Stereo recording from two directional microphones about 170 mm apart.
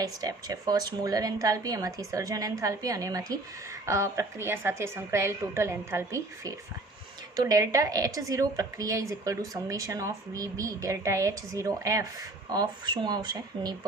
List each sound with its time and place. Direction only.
0.0 s a woman's voice: 20° right (ahead or behind)